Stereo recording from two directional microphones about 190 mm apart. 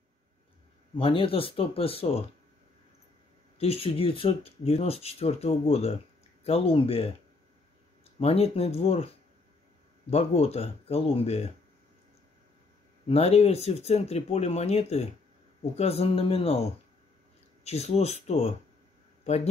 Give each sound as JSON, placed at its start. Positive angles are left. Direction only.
{"t": 0.9, "sound": "speech", "side_deg": 30}
{"t": 3.5, "sound": "speech", "side_deg": 30}
{"t": 8.2, "sound": "speech", "side_deg": 30}
{"t": 13.1, "sound": "speech", "side_deg": 30}
{"t": 17.6, "sound": "speech", "side_deg": 35}